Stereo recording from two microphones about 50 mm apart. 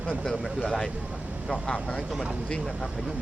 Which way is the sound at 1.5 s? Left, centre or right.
Left.